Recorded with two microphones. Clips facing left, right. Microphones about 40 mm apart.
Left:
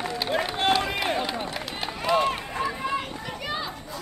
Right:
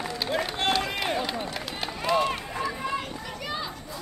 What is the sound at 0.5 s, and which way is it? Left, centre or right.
Run, centre.